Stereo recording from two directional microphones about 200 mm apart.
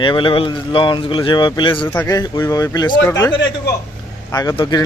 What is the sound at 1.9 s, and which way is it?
Speech, 15° left (ahead or behind).